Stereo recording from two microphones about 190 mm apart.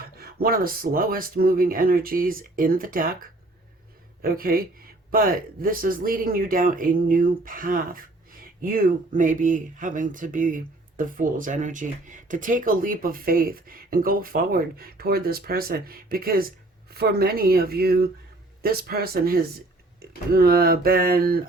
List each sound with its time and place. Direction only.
0.2 s speech: 50° right (ahead or behind)
4.2 s speech: 50° right (ahead or behind)